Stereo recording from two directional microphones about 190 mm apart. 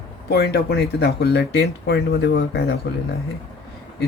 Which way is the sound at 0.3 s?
55° left (ahead or behind).